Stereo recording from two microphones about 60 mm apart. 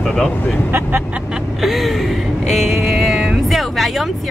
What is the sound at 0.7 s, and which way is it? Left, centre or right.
Speech, right.